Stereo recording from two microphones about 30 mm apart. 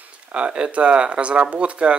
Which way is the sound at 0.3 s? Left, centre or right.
Right.